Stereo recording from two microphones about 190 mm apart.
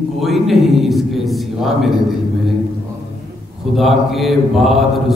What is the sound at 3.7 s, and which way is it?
Mantra, centre (ahead or behind).